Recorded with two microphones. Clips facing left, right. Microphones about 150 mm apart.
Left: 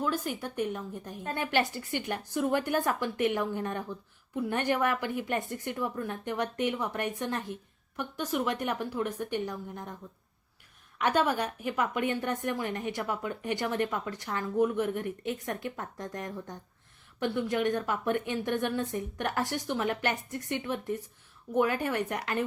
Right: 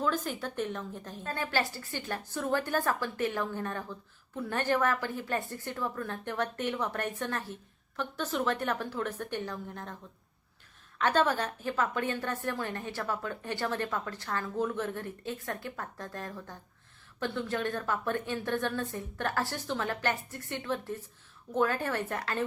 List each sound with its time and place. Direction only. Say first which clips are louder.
0.0 s speech: even; 10° left (ahead or behind)